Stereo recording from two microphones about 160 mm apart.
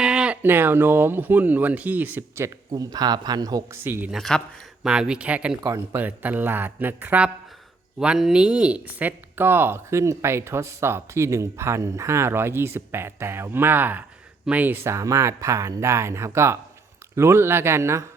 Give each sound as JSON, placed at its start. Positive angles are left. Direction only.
{"t": 0.0, "sound": "speech", "side_deg": -5}
{"t": 3.8, "sound": "speech", "side_deg": -10}
{"t": 4.2, "sound": "speech", "side_deg": 0}